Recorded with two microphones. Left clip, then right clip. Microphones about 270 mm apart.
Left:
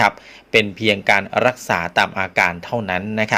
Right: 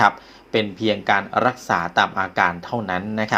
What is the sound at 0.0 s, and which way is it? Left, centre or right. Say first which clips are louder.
Speech: even; left.